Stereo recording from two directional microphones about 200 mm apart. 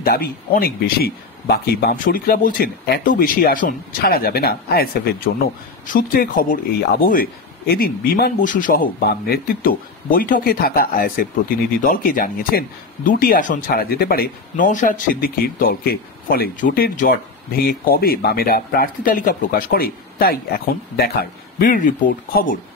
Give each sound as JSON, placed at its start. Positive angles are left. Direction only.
{"t": 0.0, "sound": "speech", "side_deg": 50}